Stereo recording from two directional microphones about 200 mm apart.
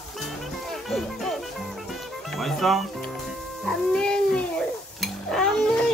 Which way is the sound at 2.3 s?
Centre (ahead or behind).